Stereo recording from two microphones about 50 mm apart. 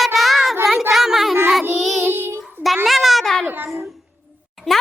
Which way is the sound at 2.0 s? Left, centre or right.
Right.